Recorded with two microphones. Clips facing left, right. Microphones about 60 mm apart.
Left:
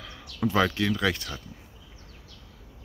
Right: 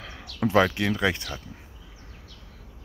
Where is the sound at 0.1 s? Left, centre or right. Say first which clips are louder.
Right 4 dB; right.